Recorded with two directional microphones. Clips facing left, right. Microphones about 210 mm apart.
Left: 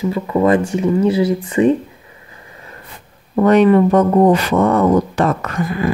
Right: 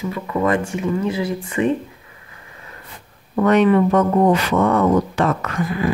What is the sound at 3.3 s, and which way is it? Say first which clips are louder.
Speech: left 4 dB; 35° left (ahead or behind).